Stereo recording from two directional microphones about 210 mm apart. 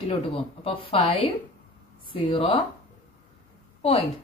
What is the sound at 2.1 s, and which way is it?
Speech, 25° left (ahead or behind).